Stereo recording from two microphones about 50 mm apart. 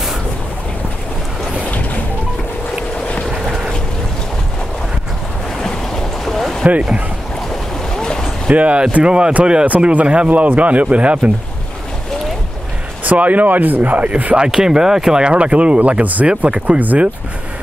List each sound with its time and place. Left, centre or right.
6.2 s boat: centre
7.9 s a sound: centre
8.5 s speech: right
13.0 s speech: right